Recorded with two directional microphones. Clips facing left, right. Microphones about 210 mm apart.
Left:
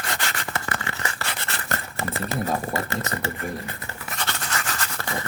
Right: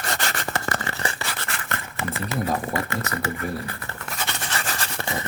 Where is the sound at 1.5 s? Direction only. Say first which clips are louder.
Left 1 dB; 40° left (ahead or behind).